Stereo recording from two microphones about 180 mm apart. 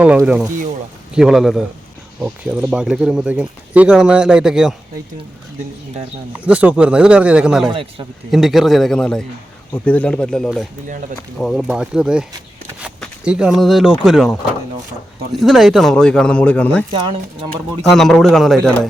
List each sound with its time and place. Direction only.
0.0 s speech: 5° right (ahead or behind)
6.3 s a man's voice: 10° right (ahead or behind)
7.7 s a man's voice: 30° right (ahead or behind)
8.3 s speech: centre (ahead or behind)
17.9 s speech: centre (ahead or behind)